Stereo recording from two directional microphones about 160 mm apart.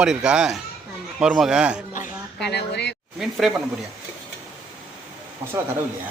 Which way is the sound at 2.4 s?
90° left.